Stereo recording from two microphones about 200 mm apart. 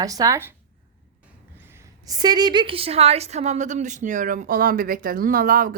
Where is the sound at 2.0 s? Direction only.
20° right (ahead or behind).